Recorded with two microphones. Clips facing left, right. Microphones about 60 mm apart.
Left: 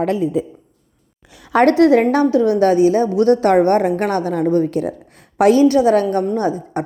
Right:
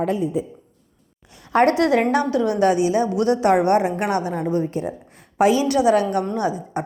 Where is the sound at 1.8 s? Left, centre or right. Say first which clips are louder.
Left 6 dB; left.